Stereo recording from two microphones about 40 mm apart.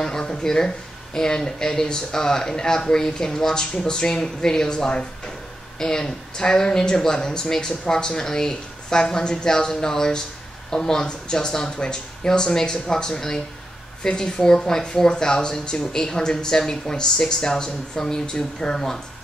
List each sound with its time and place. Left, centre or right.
0.0 s speech: centre